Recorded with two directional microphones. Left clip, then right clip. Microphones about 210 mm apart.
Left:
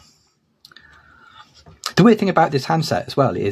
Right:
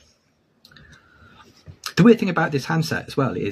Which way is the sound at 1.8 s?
50° left (ahead or behind).